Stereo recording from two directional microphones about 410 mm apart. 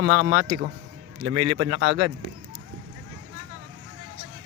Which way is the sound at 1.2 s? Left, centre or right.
Right.